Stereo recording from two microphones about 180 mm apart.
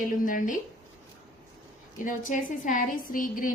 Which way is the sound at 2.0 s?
45° left (ahead or behind).